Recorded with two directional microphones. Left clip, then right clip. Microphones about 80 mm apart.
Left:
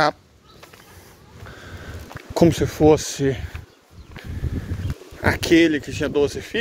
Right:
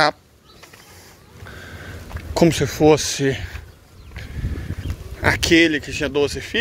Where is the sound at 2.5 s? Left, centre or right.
Left.